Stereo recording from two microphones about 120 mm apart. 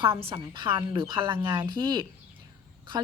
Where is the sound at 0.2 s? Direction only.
45° right (ahead or behind).